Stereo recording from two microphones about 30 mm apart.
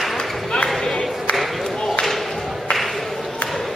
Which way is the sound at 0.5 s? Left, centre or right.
Left.